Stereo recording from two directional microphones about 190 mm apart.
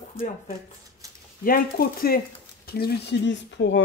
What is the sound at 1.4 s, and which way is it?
A woman's voice, 50° left (ahead or behind).